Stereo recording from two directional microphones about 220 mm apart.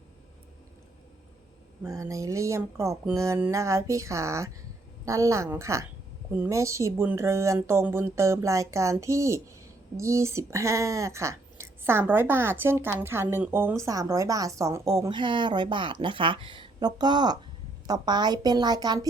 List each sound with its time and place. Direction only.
1.8 s a woman's voice: 15° right (ahead or behind)